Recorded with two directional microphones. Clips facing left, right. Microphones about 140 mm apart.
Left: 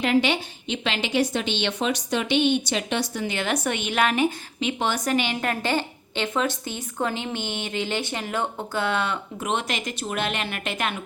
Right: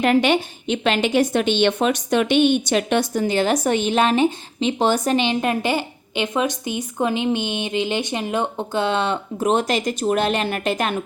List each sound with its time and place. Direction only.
0.0 s a woman's voice: 50° right (ahead or behind)